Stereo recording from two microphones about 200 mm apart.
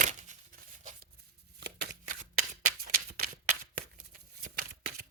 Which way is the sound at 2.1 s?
40° right (ahead or behind).